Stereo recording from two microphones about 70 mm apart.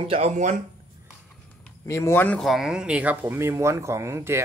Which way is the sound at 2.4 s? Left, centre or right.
Centre.